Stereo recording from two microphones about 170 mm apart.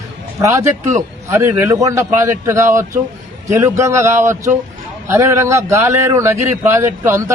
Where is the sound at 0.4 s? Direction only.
20° right (ahead or behind).